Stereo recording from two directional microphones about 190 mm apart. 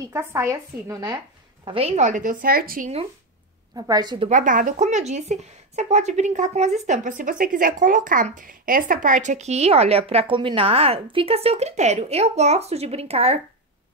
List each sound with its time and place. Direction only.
0.0 s speech: 15° right (ahead or behind); by 2.9 s 50° right (ahead or behind)
3.7 s speech: 20° right (ahead or behind)
4.3 s a woman's voice: 45° right (ahead or behind)